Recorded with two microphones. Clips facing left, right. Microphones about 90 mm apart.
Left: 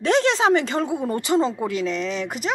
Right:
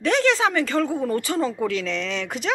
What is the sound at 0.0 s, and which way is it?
Speech, 20° left (ahead or behind).